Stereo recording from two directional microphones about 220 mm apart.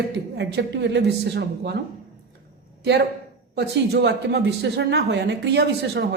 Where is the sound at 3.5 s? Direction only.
50° right (ahead or behind).